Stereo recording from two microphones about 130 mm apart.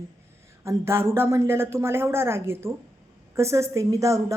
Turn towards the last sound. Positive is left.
turn(degrees=-25)  # may be behind; listen again after turning